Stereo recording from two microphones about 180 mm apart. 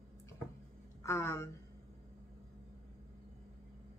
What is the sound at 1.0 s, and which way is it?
Speech, 15° left (ahead or behind).